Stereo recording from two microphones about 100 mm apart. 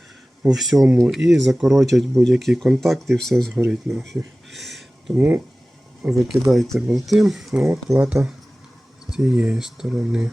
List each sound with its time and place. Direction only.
0.4 s speech: 5° right (ahead or behind)
4.4 s a sound: centre (ahead or behind)
5.1 s speech: 15° right (ahead or behind)
6.0 s speech: 5° right (ahead or behind)